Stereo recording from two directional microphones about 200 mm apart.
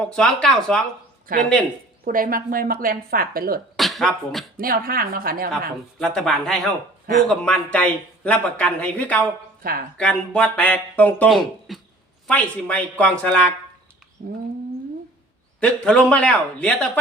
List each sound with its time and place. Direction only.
0.0 s speech: 5° left (ahead or behind)
1.3 s a woman's voice: 45° right (ahead or behind)
3.8 s speech: centre (ahead or behind)
4.5 s a woman's voice: 45° right (ahead or behind)
6.0 s speech: 5° left (ahead or behind)
9.6 s a woman's voice: 45° right (ahead or behind)
10.0 s speech: 5° left (ahead or behind)
14.2 s a woman's voice: 45° right (ahead or behind)
15.6 s speech: 5° left (ahead or behind)